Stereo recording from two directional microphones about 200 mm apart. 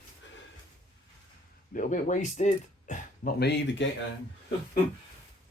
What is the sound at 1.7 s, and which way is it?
Speech, 40° left (ahead or behind).